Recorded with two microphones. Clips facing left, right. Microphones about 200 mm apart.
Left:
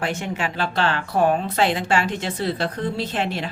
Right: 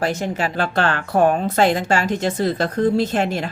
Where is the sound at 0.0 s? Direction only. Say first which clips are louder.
Right 4 dB; 40° right (ahead or behind).